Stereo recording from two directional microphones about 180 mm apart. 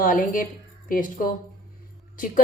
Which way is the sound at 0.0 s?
50° left (ahead or behind).